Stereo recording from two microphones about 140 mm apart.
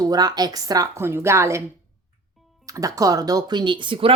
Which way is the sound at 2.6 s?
25° right (ahead or behind).